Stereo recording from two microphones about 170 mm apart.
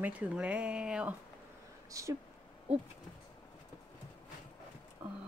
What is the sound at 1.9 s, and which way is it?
Speech, 20° right (ahead or behind).